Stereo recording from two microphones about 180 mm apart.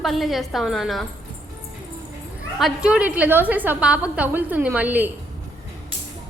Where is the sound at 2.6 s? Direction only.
Centre (ahead or behind).